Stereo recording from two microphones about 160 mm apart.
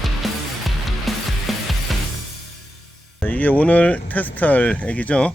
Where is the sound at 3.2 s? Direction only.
10° left (ahead or behind).